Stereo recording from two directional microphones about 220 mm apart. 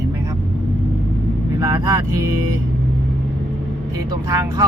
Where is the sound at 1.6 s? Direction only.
15° right (ahead or behind).